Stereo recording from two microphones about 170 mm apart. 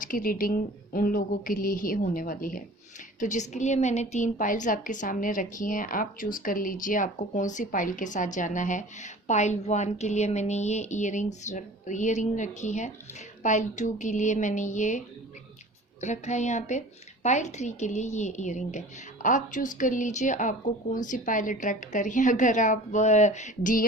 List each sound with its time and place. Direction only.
0.0 s a woman's voice: 55° left (ahead or behind)